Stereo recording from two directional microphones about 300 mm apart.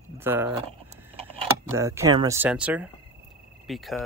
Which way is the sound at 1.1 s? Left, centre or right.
Centre.